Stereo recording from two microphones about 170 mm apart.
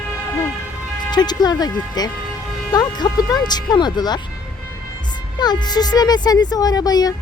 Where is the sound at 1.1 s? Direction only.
25° left (ahead or behind).